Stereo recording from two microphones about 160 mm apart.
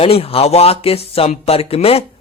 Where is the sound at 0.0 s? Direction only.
35° left (ahead or behind).